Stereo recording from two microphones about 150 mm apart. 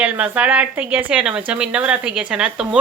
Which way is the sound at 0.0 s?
10° right (ahead or behind).